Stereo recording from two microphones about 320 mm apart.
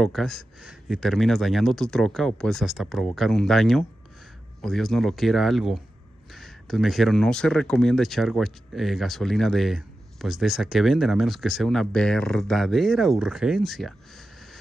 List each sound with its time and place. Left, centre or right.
0.0 s speech: centre